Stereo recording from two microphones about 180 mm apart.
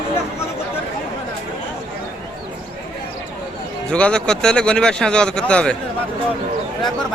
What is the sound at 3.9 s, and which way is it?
Speech, 5° left (ahead or behind).